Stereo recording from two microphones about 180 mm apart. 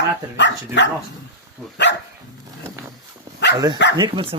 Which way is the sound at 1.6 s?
Centre (ahead or behind).